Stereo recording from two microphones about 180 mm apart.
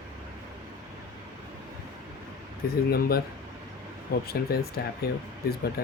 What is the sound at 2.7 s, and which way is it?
Speech, 60° left (ahead or behind).